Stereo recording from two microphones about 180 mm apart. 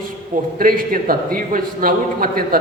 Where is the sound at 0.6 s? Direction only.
50° right (ahead or behind).